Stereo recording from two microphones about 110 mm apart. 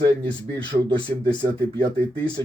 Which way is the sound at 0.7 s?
80° right.